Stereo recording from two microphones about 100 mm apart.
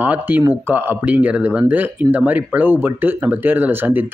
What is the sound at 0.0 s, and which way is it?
Speech, 15° right (ahead or behind).